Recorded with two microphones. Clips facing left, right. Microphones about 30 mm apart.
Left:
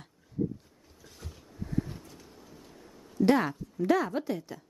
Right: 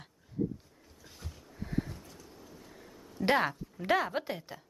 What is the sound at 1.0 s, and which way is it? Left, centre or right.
Roaring cats, centre.